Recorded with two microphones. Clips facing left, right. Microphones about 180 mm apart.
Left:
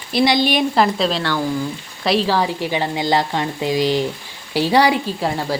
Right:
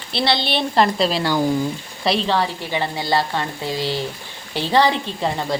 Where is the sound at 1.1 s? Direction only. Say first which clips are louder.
Right 1 dB; 10° right (ahead or behind).